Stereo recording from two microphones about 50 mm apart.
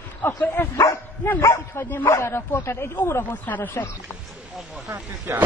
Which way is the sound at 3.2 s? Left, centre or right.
Left.